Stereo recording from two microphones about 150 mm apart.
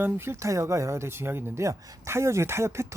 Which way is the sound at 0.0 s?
15° right (ahead or behind).